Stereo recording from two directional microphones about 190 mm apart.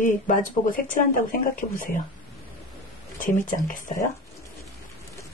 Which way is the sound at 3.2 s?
45° left (ahead or behind).